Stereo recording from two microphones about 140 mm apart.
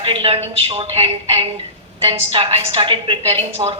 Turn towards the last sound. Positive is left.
turn(degrees=-40)  # may be behind; listen again after turning